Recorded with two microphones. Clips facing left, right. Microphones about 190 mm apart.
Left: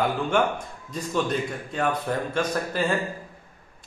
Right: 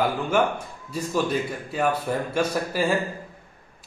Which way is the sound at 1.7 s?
5° right (ahead or behind).